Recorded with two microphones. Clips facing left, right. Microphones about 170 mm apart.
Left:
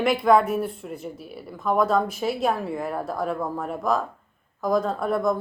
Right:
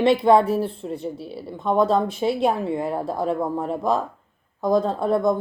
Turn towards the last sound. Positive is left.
turn(degrees=-25)  # may be behind; listen again after turning